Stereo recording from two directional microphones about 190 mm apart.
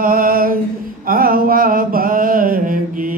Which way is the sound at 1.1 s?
50° right (ahead or behind).